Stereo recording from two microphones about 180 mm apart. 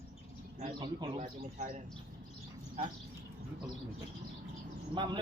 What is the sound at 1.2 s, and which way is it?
Speech, 40° right (ahead or behind).